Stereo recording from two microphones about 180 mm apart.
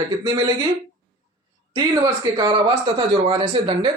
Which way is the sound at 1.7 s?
20° right (ahead or behind).